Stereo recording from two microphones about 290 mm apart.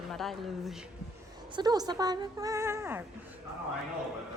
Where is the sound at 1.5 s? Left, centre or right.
Centre.